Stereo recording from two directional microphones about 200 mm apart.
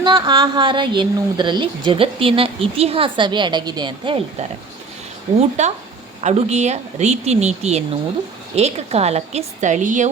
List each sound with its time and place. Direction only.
0.0 s a woman's voice: 20° right (ahead or behind); by 10.1 s 40° right (ahead or behind)